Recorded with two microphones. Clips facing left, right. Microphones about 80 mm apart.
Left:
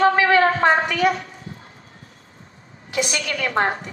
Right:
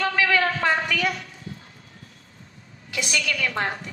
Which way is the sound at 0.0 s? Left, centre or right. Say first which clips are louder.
Left 6 dB; left.